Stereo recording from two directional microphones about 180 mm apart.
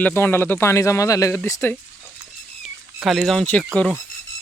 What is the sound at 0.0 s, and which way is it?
Speech, 10° left (ahead or behind).